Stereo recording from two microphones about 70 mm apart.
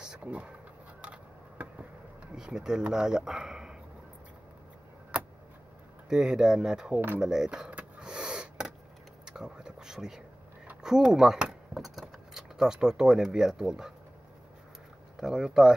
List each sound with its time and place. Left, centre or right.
0.0 s speech: centre
1.0 s a sound: centre
2.3 s speech: centre
6.0 s speech: centre
7.7 s snort: centre
9.2 s a sound: centre
15.1 s speech: centre